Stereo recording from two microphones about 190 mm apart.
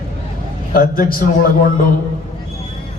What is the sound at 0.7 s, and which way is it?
Speech, 50° left (ahead or behind).